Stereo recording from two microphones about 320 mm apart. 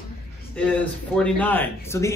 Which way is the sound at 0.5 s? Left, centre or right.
Centre.